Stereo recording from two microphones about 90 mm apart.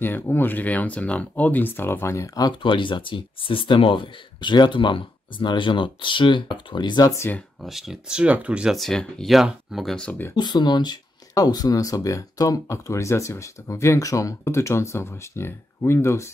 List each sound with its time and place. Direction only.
0.0 s speech: 25° left (ahead or behind); by 2.5 s 40° left (ahead or behind)
2.6 s speech: 65° left (ahead or behind)
7.6 s speech: 5° right (ahead or behind)
8.7 s speech: 5° left (ahead or behind)
10.3 s speech: 55° left (ahead or behind); by 16.3 s 30° left (ahead or behind)